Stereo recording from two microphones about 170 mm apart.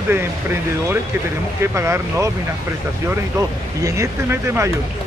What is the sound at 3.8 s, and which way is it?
Speech, 15° right (ahead or behind).